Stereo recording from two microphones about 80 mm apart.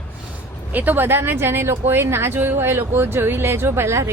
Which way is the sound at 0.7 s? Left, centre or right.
Right.